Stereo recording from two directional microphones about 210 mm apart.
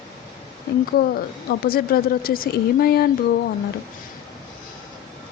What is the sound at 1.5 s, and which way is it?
Speech, 45° left (ahead or behind).